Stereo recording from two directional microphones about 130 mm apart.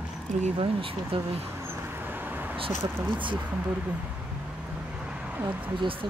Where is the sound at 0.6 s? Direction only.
45° right (ahead or behind).